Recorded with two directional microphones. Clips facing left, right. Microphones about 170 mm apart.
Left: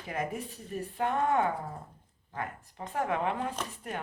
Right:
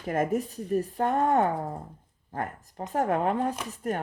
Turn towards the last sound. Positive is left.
turn(degrees=-45)  # may be behind; listen again after turning